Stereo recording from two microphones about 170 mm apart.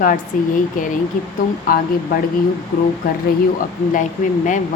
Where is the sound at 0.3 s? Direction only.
50° left (ahead or behind).